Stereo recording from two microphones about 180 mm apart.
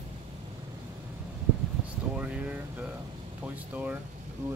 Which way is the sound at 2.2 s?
5° right (ahead or behind).